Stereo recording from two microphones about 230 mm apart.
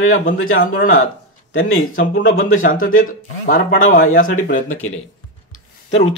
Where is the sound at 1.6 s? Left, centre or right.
Left.